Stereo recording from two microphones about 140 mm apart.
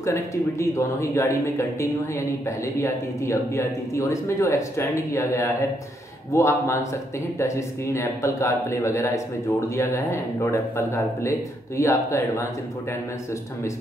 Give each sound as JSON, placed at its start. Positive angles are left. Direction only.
{"t": 0.0, "sound": "speech", "side_deg": 20}